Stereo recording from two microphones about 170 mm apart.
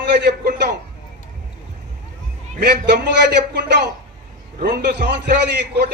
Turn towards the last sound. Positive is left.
turn(degrees=-80)